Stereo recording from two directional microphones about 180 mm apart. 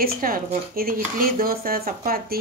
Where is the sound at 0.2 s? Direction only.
55° right (ahead or behind).